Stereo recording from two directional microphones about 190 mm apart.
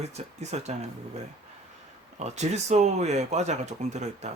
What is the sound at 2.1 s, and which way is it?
Speech, 35° right (ahead or behind).